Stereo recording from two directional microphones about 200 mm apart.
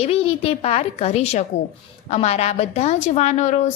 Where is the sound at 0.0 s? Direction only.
30° left (ahead or behind).